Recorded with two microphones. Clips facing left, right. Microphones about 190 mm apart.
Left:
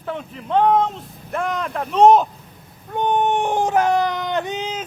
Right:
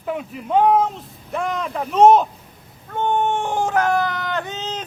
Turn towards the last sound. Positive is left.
turn(degrees=10)  # may be behind; listen again after turning